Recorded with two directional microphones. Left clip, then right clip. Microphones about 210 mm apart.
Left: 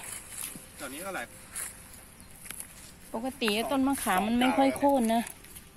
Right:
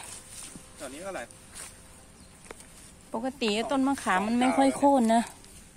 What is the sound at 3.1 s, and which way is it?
Speech, 10° right (ahead or behind).